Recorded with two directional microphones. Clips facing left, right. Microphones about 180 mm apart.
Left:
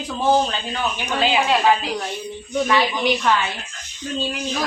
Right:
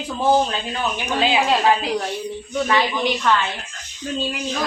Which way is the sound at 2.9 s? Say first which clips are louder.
Even; 15° left (ahead or behind).